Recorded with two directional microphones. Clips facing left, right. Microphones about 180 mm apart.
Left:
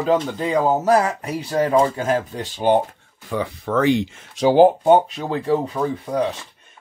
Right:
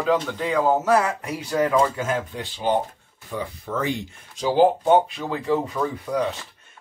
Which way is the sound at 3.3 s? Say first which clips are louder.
Left 7 dB; 80° left.